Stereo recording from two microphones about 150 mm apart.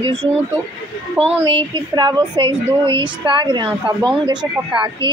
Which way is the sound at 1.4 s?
35° right (ahead or behind).